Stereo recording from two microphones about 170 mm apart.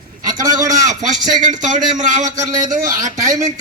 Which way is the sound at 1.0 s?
45° right (ahead or behind).